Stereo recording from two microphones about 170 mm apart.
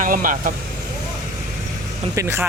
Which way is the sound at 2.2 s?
15° right (ahead or behind).